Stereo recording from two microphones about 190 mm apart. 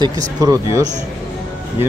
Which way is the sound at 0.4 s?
20° right (ahead or behind).